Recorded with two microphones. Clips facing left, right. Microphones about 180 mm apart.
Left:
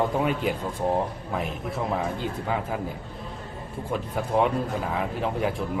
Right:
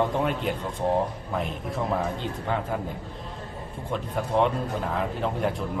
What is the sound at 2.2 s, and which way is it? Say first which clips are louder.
Speech: left 1 dB; 5° left (ahead or behind).